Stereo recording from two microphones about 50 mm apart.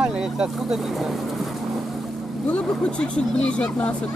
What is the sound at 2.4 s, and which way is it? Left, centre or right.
Speech, left.